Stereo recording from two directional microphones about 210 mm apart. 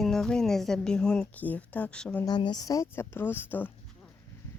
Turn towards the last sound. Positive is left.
turn(degrees=10)  # may be behind; listen again after turning